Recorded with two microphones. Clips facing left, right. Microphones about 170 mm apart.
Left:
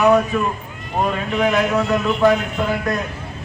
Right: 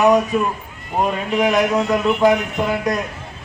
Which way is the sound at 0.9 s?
15° right (ahead or behind).